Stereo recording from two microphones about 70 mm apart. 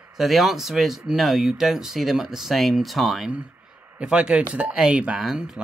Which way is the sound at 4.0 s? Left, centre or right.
Centre.